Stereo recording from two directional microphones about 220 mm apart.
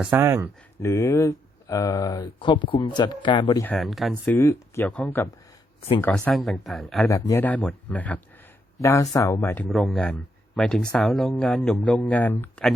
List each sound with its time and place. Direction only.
0.0 s speech: 10° right (ahead or behind)
0.8 s speech: 15° left (ahead or behind)
3.6 s speech: 5° left (ahead or behind)
4.4 s speech: 10° left (ahead or behind)
7.1 s speech: 15° left (ahead or behind)
9.6 s speech: centre (ahead or behind)